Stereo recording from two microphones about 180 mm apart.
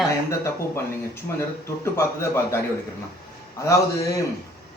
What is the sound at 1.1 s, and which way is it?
A man's voice, 15° left (ahead or behind).